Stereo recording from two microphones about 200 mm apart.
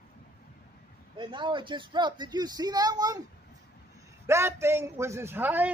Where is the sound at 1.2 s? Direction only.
25° right (ahead or behind).